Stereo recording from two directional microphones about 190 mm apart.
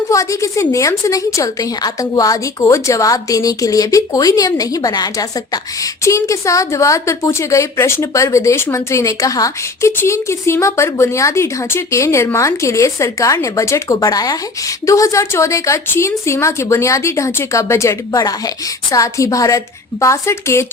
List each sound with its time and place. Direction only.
0.1 s a woman's voice: 15° left (ahead or behind)